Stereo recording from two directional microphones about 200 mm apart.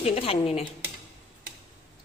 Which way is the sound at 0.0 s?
30° left (ahead or behind).